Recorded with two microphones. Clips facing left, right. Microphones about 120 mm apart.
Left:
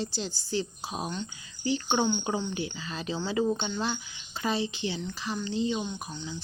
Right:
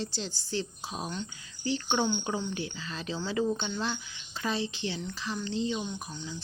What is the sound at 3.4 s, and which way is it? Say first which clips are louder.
Speech: left 2 dB; 20° left (ahead or behind).